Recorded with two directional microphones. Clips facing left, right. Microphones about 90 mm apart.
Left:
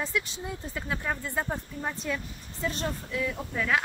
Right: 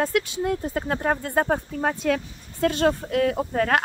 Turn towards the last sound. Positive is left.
turn(degrees=-60)  # may be behind; listen again after turning